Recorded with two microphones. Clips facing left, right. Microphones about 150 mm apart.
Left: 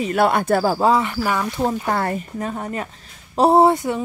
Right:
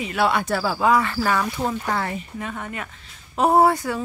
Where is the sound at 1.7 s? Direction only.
45° left (ahead or behind); by 4.0 s 20° left (ahead or behind).